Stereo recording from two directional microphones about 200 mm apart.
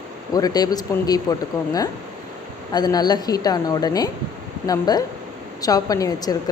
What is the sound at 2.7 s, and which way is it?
A woman's voice, 20° left (ahead or behind).